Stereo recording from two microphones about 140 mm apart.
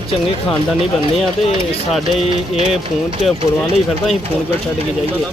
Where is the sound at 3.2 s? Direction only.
50° left (ahead or behind).